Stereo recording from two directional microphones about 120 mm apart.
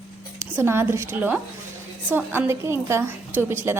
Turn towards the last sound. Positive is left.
turn(degrees=-20)  # may be behind; listen again after turning